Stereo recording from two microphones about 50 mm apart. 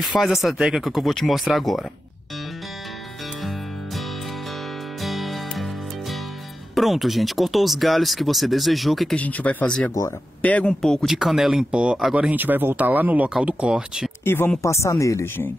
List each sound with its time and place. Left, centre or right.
0.2 s speech: centre
5.0 s music: centre
6.7 s speech: centre
9.1 s speech: left
10.8 s speech: centre
11.1 s speech: centre
11.7 s speech: centre
12.4 s speech: right
13.3 s speech: right
14.2 s speech: left
14.6 s speech: left